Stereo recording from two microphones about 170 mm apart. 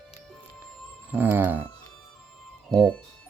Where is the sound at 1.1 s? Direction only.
10° right (ahead or behind).